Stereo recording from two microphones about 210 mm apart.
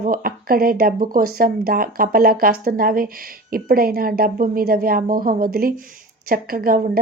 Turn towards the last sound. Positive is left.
turn(degrees=-40)  # may be behind; listen again after turning